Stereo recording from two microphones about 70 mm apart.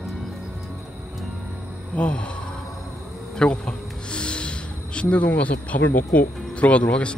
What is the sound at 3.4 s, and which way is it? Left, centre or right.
Speech, centre.